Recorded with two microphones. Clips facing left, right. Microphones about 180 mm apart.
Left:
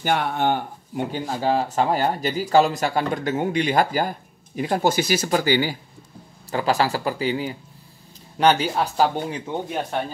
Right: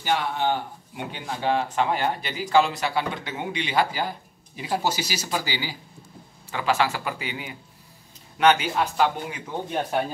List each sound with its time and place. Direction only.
0.0 s speech: 50° left (ahead or behind)
6.5 s speech: 35° left (ahead or behind)